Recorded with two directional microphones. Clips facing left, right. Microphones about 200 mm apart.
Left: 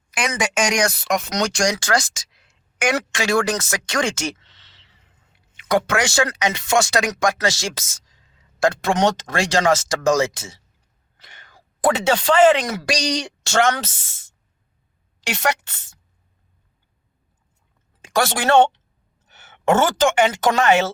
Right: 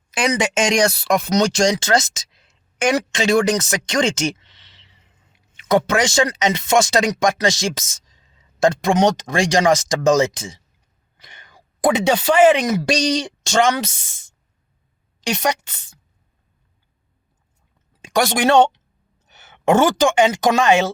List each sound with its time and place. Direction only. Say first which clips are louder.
0.1 s speech: right 4 dB; 25° right (ahead or behind)
12.8 s speech: right 4 dB; 25° right (ahead or behind)
15.3 s speech: right 2 dB; 15° right (ahead or behind)
18.0 s speech: right 3 dB; 15° right (ahead or behind)